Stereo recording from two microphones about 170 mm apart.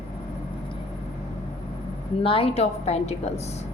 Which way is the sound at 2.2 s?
35° left (ahead or behind).